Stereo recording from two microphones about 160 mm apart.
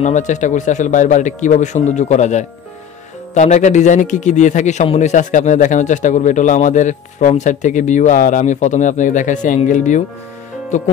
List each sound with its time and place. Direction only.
0.0 s a man's voice: 50° left (ahead or behind)